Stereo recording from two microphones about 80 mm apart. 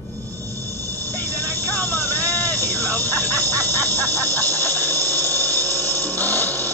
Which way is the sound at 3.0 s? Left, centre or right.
Left.